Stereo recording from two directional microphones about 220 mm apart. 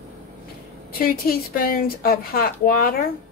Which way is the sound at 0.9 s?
40° left (ahead or behind).